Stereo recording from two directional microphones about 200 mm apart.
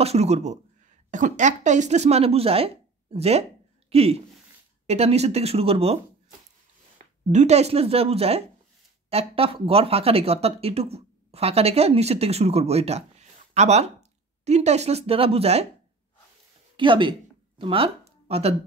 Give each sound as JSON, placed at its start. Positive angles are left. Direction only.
{"t": 0.0, "sound": "speech", "side_deg": -30}
{"t": 7.2, "sound": "speech", "side_deg": -35}
{"t": 16.7, "sound": "speech", "side_deg": -25}